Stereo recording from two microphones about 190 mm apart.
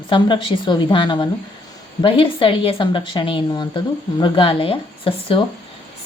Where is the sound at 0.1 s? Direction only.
25° left (ahead or behind).